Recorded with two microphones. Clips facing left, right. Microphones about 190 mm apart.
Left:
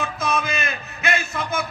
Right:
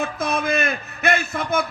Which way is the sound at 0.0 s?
55° right (ahead or behind).